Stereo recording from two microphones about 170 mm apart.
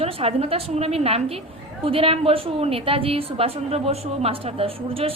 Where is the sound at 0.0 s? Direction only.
35° right (ahead or behind).